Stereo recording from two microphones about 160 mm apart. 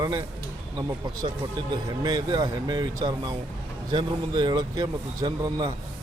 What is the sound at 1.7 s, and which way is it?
A man's voice, 25° right (ahead or behind).